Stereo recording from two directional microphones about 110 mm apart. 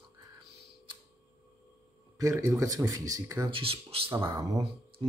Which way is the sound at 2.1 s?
30° right (ahead or behind).